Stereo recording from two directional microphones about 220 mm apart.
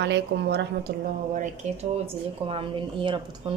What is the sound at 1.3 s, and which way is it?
Speech, 30° right (ahead or behind).